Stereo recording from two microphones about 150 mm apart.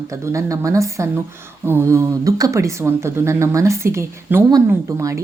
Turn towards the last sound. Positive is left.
turn(degrees=-20)  # may be behind; listen again after turning